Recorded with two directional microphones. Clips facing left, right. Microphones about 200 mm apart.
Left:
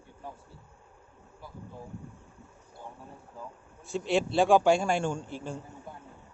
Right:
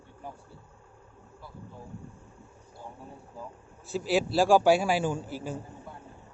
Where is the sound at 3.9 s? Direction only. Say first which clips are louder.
Right 1 dB; 5° right (ahead or behind).